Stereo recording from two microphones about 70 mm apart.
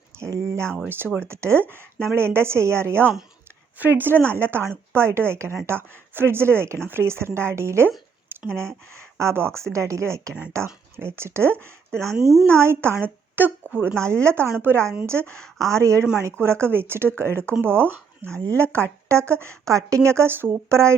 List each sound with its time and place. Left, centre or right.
0.2 s speech: right
0.9 s speech: right
9.1 s speech: right
12.1 s speech: centre
12.5 s a woman's voice: right
14.0 s speech: right